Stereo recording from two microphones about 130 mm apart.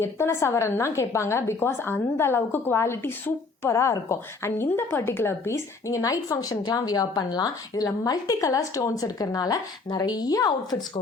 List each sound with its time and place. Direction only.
0.0 s a woman's voice: 20° left (ahead or behind)